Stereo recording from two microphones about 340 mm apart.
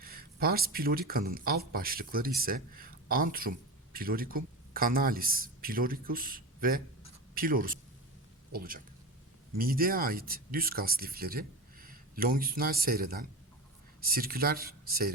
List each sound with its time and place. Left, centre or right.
0.0 s speech: right